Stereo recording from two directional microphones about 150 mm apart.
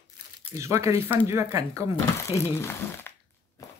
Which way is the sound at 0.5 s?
20° right (ahead or behind).